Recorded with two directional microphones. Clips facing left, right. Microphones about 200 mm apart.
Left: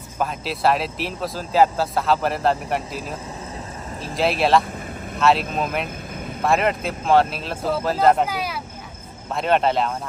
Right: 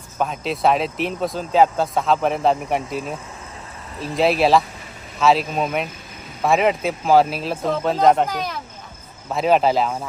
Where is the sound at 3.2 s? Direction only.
35° left (ahead or behind).